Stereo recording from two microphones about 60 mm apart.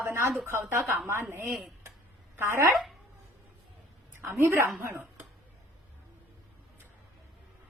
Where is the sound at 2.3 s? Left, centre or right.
Right.